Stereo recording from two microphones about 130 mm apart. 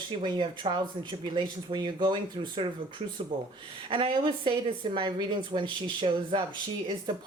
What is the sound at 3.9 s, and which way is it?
Speech, 40° right (ahead or behind).